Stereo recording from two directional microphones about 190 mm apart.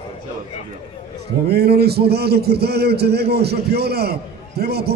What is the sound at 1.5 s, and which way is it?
A man's voice, 55° right (ahead or behind).